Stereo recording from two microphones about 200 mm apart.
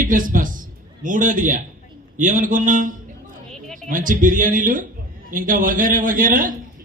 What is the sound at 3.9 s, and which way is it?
A woman's voice, 40° right (ahead or behind).